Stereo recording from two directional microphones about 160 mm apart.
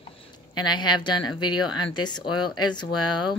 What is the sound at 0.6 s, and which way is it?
A woman's voice, 25° left (ahead or behind).